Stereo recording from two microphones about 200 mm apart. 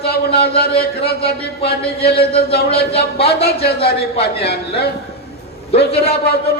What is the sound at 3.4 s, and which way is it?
A man's voice, 50° left (ahead or behind).